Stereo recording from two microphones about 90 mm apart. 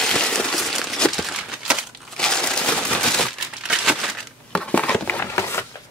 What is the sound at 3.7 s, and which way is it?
Crumpling, 10° right (ahead or behind).